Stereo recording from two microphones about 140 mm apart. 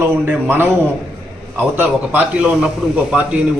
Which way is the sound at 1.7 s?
15° right (ahead or behind).